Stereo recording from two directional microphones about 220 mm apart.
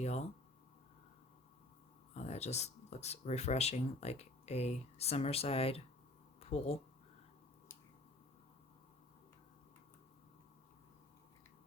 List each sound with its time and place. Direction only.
0.0 s speech: 30° left (ahead or behind)
2.1 s speech: 30° left (ahead or behind)
6.4 s a sound: 30° left (ahead or behind)